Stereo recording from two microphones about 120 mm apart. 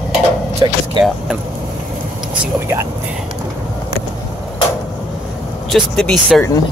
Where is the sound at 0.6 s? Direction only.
40° right (ahead or behind).